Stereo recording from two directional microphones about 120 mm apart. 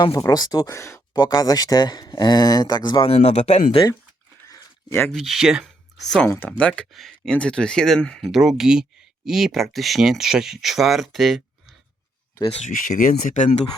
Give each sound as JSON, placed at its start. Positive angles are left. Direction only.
{"t": 0.0, "sound": "speech", "side_deg": 35}
{"t": 1.1, "sound": "speech", "side_deg": 35}
{"t": 3.1, "sound": "speech", "side_deg": 60}
{"t": 4.4, "sound": "a sound", "side_deg": 25}
{"t": 5.1, "sound": "speech", "side_deg": 0}
{"t": 6.6, "sound": "speech", "side_deg": 10}
{"t": 12.5, "sound": "speech", "side_deg": 75}